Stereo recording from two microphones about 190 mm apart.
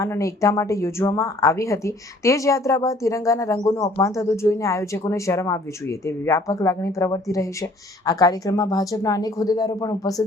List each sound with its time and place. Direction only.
0.0 s speech: 15° left (ahead or behind)